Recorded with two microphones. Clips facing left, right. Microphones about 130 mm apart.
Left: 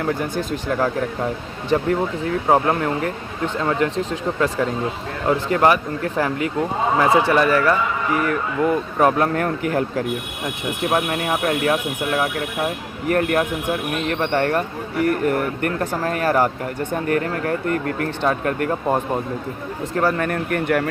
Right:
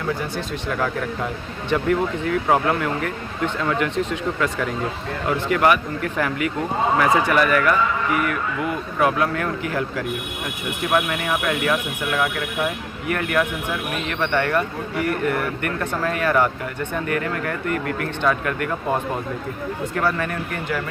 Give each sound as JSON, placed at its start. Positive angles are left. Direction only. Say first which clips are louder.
{"t": 0.5, "sound": "a man's voice", "louder": "left 3 dB", "side_deg": 40}
{"t": 10.9, "sound": "a man's voice", "louder": "right 1 dB", "side_deg": 30}
{"t": 20.0, "sound": "speech", "louder": "left 4 dB", "side_deg": 40}